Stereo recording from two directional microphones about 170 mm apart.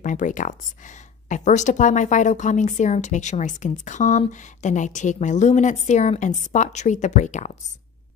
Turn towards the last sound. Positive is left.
turn(degrees=45)  # may be behind; listen again after turning